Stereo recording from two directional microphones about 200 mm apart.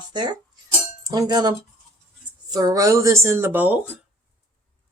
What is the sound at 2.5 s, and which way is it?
Speech, 15° right (ahead or behind).